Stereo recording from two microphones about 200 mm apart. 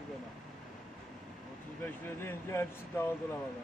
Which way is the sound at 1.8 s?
10° left (ahead or behind).